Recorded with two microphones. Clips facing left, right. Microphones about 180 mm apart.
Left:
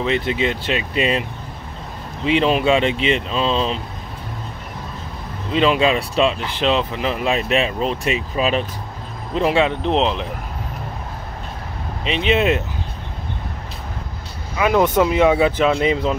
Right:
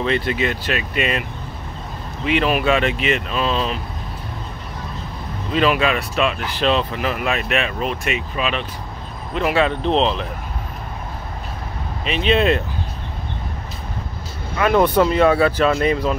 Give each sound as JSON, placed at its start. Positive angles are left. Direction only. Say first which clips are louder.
{"t": 0.0, "sound": "speech", "louder": "even", "side_deg": 20}
{"t": 2.2, "sound": "speech", "louder": "left 2 dB", "side_deg": 25}
{"t": 5.5, "sound": "speech", "louder": "left 2 dB", "side_deg": 20}
{"t": 9.7, "sound": "speech", "louder": "even", "side_deg": 15}
{"t": 12.0, "sound": "speech", "louder": "even", "side_deg": 20}
{"t": 14.6, "sound": "speech", "louder": "even", "side_deg": 10}